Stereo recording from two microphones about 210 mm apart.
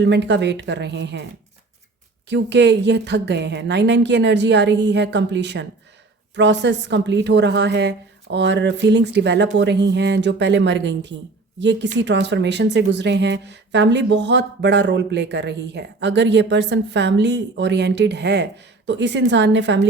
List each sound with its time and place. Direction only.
0.0 s speech: 55° right (ahead or behind)
2.3 s speech: 55° right (ahead or behind)